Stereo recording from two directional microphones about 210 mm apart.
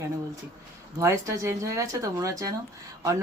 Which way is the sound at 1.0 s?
15° right (ahead or behind).